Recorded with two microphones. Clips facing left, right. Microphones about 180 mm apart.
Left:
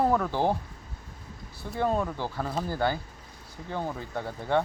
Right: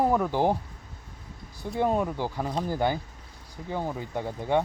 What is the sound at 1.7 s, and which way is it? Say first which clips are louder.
Speech: right 2 dB; 15° right (ahead or behind).